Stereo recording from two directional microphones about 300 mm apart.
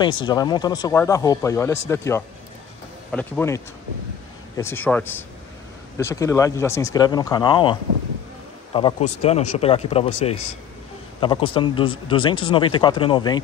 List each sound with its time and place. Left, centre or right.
0.3 s speech: centre
8.7 s speech: centre
11.1 s speech: centre